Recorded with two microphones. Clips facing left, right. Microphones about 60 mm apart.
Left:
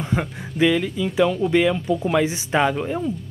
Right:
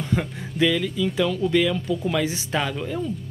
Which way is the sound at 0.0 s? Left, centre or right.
Centre.